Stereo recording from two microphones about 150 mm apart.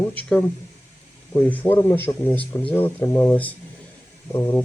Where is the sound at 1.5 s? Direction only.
15° left (ahead or behind).